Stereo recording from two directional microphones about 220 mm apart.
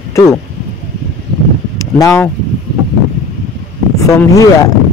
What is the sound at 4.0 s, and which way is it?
Speech, 15° left (ahead or behind).